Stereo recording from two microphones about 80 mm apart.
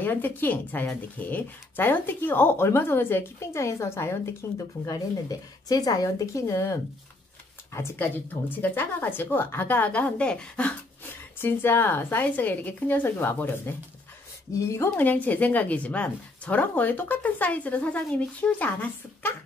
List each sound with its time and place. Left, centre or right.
0.0 s a woman's voice: left
4.8 s a woman's voice: left; by 10.7 s centre
11.3 s a woman's voice: left
14.5 s speech: left
14.9 s a woman's voice: left